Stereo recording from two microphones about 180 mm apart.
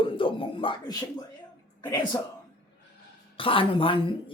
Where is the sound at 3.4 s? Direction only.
30° left (ahead or behind).